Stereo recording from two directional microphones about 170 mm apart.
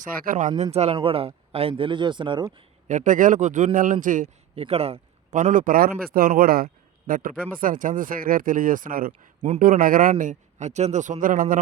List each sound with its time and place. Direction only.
0.0 s speech: 50° right (ahead or behind)
0.6 s speech: 40° right (ahead or behind)
2.8 s speech: 45° right (ahead or behind)
4.5 s a man's voice: 35° right (ahead or behind); by 11.6 s 55° right (ahead or behind)